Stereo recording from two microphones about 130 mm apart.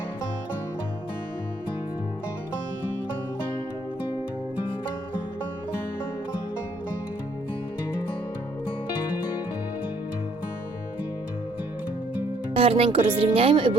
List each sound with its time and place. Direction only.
12.5 s speech: 50° right (ahead or behind)